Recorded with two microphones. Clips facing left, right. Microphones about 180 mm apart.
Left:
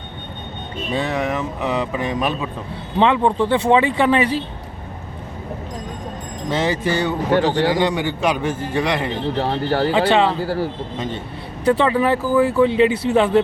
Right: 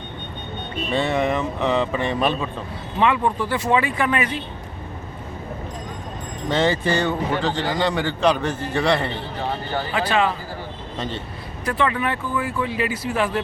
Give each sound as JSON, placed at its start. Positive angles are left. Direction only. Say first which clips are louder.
{"t": 0.9, "sound": "speech", "louder": "right 1 dB", "side_deg": 5}
{"t": 3.0, "sound": "speech", "louder": "left 4 dB", "side_deg": 25}
{"t": 6.5, "sound": "speech", "louder": "even", "side_deg": 10}
{"t": 7.3, "sound": "speech", "louder": "left 6 dB", "side_deg": 75}
{"t": 7.8, "sound": "speech", "louder": "left 2 dB", "side_deg": 15}
{"t": 9.4, "sound": "speech", "louder": "left 6 dB", "side_deg": 75}
{"t": 10.1, "sound": "speech", "louder": "left 5 dB", "side_deg": 30}
{"t": 10.4, "sound": "speech", "louder": "left 12 dB", "side_deg": 80}
{"t": 10.9, "sound": "speech", "louder": "left 2 dB", "side_deg": 10}
{"t": 11.7, "sound": "speech", "louder": "left 6 dB", "side_deg": 30}